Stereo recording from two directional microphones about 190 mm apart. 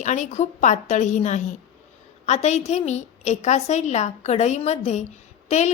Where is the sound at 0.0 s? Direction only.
40° left (ahead or behind).